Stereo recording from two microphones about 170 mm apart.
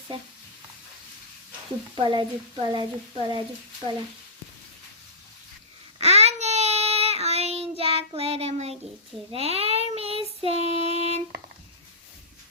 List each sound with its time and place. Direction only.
2.0 s speech: 30° right (ahead or behind)
6.0 s child singing: 40° right (ahead or behind)